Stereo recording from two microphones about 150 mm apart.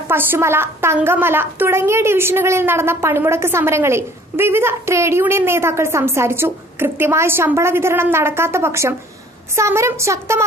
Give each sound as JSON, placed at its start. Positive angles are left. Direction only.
{"t": 0.1, "sound": "a woman's voice", "side_deg": -15}